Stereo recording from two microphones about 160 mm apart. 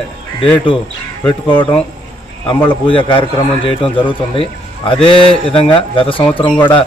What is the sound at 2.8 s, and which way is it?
A man's voice, 30° left (ahead or behind).